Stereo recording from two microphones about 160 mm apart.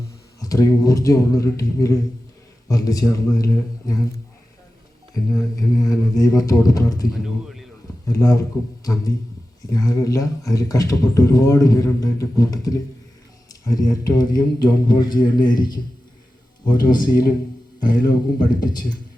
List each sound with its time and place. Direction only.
0.3 s speech: 20° left (ahead or behind)
5.3 s speech: 20° left (ahead or behind)
7.1 s speech: centre (ahead or behind)
8.0 s speech: 20° left (ahead or behind)
16.6 s speech: 25° left (ahead or behind)